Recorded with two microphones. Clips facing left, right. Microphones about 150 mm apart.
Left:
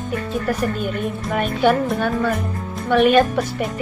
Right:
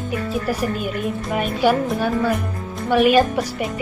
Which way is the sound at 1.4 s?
5° right (ahead or behind).